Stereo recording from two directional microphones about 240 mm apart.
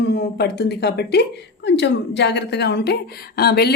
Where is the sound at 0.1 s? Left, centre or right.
Left.